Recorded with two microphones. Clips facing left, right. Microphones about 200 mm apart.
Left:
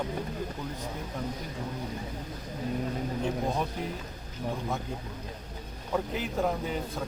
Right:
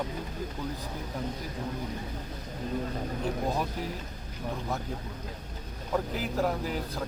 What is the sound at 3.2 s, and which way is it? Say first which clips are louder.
Speech: even; centre (ahead or behind).